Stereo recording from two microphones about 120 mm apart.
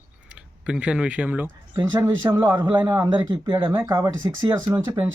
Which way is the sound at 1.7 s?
30° right (ahead or behind).